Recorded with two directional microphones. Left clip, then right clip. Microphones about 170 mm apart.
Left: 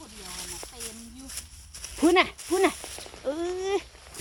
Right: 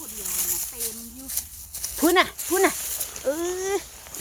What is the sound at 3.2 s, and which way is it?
Speech, 15° right (ahead or behind).